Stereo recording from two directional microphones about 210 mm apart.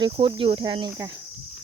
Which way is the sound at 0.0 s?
20° right (ahead or behind).